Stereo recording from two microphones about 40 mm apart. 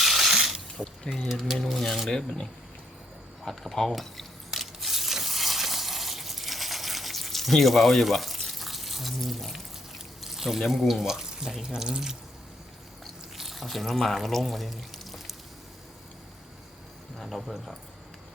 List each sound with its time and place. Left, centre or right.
0.0 s a sound: centre
1.3 s speech: centre
1.5 s speech: centre
2.0 s speech: centre
3.4 s speech: centre
4.5 s a sound: centre
8.4 s water: centre
10.2 s speech: centre
11.0 s speech: centre
13.3 s speech: centre
17.2 s speech: centre